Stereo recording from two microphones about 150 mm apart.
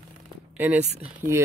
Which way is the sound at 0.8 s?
45° right (ahead or behind).